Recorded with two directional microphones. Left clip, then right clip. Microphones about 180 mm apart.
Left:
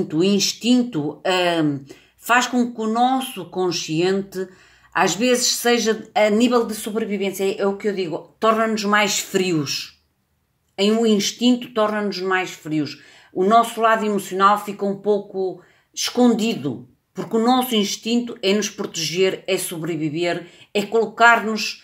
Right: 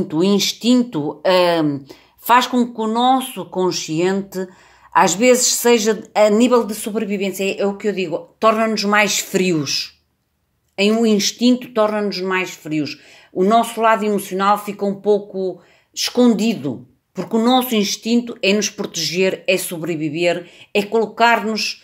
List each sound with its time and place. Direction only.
0.1 s speech: 35° right (ahead or behind)